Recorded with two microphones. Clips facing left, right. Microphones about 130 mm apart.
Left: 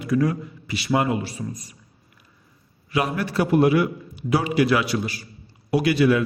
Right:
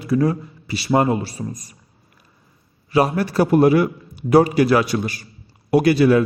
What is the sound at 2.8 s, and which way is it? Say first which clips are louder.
A man's voice: right 6 dB; 35° right (ahead or behind).